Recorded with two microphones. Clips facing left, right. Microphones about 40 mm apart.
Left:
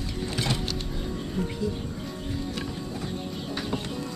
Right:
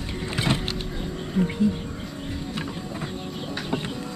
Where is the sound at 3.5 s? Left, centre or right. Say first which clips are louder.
Right 3 dB; right.